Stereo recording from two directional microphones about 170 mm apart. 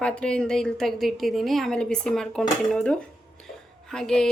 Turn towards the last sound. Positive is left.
turn(degrees=5)  # may be behind; listen again after turning